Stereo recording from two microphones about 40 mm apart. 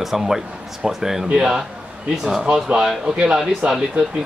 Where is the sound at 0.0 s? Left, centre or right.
Centre.